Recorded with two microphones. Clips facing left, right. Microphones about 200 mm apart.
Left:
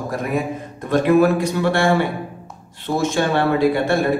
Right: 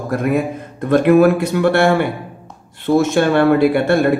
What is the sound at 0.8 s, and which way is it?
Speech, 55° right (ahead or behind).